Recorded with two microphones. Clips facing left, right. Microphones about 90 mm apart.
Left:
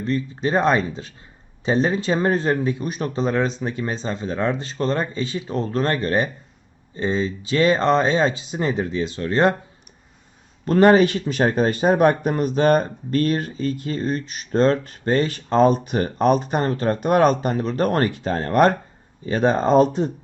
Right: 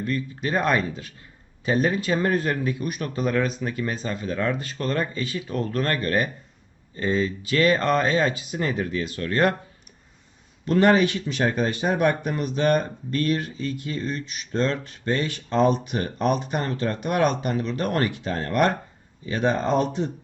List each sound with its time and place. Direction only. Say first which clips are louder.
0.0 s speech: left 4 dB; 25° left (ahead or behind)
10.7 s speech: left 4 dB; 35° left (ahead or behind)